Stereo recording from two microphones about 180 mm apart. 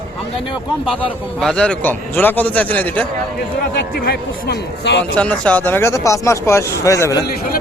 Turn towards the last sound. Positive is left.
turn(degrees=20)  # may be behind; listen again after turning